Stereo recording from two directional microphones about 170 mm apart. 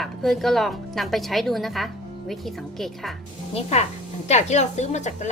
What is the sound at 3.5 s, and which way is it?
A woman's voice, 40° left (ahead or behind).